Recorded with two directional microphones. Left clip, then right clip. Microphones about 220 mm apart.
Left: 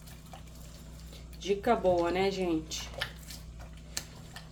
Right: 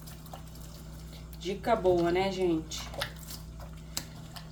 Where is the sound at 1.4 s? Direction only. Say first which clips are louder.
Even; 40° left (ahead or behind).